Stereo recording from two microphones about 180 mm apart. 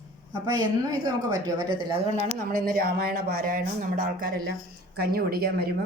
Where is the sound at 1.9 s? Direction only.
45° right (ahead or behind).